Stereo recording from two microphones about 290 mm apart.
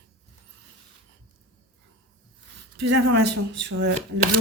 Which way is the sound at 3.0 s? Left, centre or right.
Right.